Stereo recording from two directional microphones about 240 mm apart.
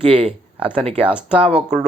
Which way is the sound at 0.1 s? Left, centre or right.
Right.